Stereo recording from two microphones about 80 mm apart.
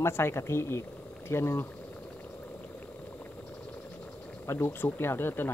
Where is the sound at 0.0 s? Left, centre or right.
Left.